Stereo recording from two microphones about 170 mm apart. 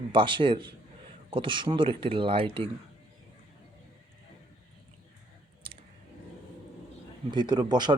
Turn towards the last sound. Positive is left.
turn(degrees=-25)  # may be behind; listen again after turning